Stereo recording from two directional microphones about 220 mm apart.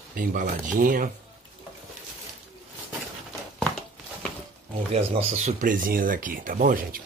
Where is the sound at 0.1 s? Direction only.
40° right (ahead or behind).